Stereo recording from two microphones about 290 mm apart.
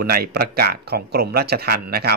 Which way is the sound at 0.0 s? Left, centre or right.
Right.